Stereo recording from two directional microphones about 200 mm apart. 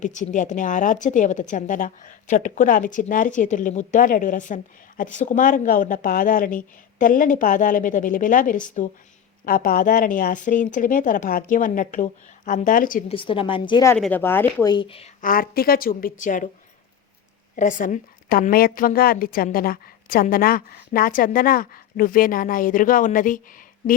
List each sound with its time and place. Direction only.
0.0 s a woman's voice: 40° left (ahead or behind)
13.1 s a woman's voice: 25° left (ahead or behind)
13.9 s speech: 10° left (ahead or behind)
14.7 s a woman's voice: 25° left (ahead or behind)
15.2 s a woman's voice: 45° left (ahead or behind)
17.6 s a woman's voice: 40° left (ahead or behind)